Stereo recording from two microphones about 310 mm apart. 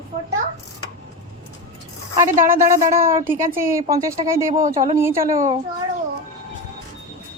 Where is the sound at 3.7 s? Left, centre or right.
Centre.